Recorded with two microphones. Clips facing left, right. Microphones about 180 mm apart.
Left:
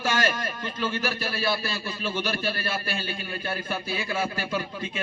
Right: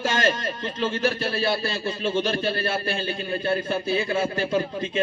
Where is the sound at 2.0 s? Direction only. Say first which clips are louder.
Right 5 dB; 25° right (ahead or behind).